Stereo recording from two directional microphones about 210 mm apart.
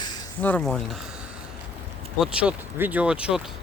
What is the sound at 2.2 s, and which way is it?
Speech, 5° right (ahead or behind).